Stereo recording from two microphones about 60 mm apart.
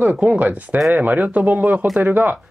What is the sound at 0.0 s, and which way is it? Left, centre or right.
Speech, right.